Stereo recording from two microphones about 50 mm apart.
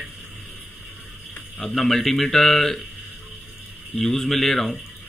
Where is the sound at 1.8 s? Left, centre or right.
Centre.